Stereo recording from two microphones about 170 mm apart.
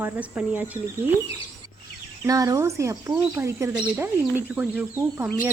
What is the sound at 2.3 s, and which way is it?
Speech, 20° right (ahead or behind).